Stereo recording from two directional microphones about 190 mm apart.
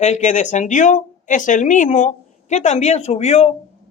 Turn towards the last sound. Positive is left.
turn(degrees=35)  # may be behind; listen again after turning